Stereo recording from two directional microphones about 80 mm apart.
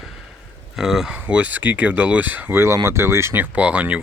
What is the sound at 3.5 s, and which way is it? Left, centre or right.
Speech, centre.